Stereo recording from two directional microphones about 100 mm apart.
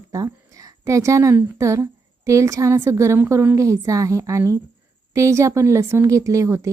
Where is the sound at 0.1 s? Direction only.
35° right (ahead or behind).